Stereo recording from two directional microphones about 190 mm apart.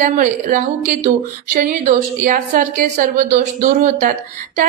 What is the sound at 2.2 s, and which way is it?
A woman's voice, 45° right (ahead or behind).